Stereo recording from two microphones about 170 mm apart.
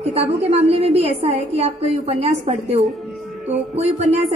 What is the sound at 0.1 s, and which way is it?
A woman's voice, 35° right (ahead or behind).